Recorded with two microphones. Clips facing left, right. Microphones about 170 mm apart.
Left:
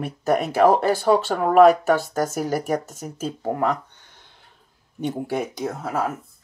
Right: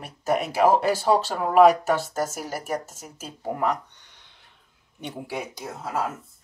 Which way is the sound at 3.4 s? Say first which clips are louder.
Left 2 dB; 50° left (ahead or behind).